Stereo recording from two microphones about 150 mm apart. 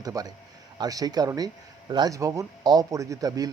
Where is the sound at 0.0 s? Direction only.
25° right (ahead or behind).